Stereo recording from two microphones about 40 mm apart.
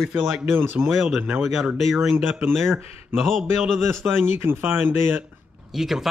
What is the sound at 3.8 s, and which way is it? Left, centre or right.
Speech, right.